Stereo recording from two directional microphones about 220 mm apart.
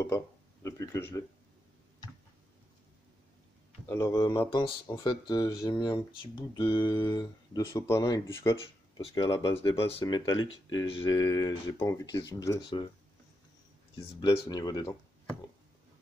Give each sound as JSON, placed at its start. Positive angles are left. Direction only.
{"t": 0.7, "sound": "speech", "side_deg": 15}
{"t": 3.9, "sound": "speech", "side_deg": 15}
{"t": 13.9, "sound": "speech", "side_deg": 20}